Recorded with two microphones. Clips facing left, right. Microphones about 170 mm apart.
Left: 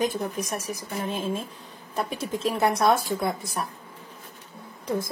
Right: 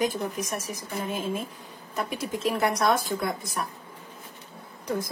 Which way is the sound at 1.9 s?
30° left (ahead or behind).